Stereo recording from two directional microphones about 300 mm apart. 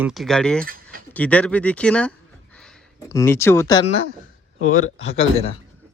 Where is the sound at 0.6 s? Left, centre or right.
Right.